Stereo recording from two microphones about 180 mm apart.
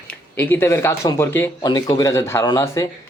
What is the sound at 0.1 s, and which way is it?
Speech, 10° left (ahead or behind).